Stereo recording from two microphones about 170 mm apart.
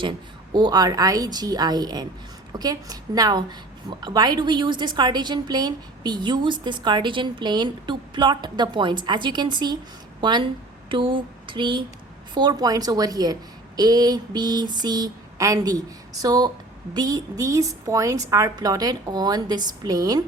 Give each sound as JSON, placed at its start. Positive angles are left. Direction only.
{"t": 0.5, "sound": "a woman's voice", "side_deg": -25}